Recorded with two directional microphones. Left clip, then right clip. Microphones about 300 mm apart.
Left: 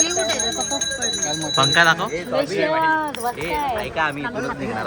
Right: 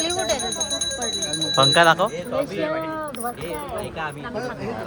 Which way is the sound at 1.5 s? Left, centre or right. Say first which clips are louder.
Even; centre.